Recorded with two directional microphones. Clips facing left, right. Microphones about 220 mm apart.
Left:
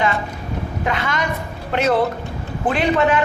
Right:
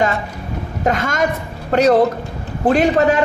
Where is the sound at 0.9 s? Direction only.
45° right (ahead or behind).